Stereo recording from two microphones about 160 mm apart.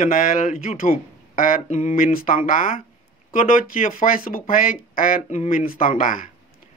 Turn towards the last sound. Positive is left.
turn(degrees=60)  # may be behind; listen again after turning